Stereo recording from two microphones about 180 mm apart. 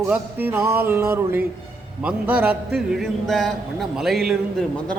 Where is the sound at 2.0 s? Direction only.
10° right (ahead or behind).